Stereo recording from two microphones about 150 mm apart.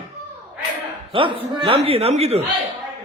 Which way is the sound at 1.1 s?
35° right (ahead or behind).